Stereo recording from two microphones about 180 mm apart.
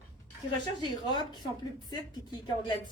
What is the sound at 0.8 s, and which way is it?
Speech, 25° left (ahead or behind).